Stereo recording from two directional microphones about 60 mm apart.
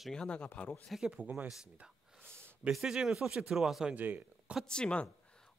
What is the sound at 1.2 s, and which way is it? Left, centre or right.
Speech, right.